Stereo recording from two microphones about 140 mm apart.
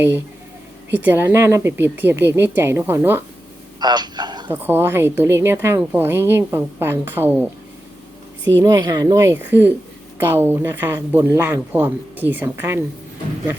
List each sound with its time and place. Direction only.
0.9 s a woman's voice: 15° right (ahead or behind)
3.8 s a sound: 30° right (ahead or behind)
4.4 s a woman's voice: 15° right (ahead or behind)
8.4 s a woman's voice: 25° right (ahead or behind)